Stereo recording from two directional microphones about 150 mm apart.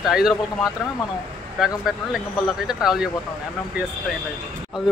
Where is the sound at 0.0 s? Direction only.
5° right (ahead or behind).